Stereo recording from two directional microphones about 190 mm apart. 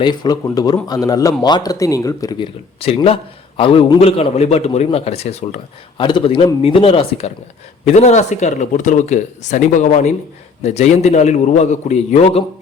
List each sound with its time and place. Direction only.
0.0 s speech: 20° left (ahead or behind)
2.8 s speech: 30° left (ahead or behind)